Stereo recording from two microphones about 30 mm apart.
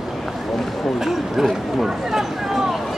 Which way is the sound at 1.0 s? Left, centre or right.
Centre.